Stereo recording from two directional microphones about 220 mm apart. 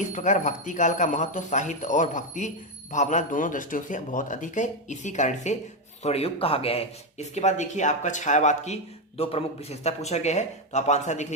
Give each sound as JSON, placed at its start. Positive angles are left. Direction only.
{"t": 0.0, "sound": "speech", "side_deg": 35}